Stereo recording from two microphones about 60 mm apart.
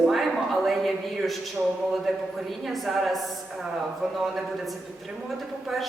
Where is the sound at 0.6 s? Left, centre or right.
Centre.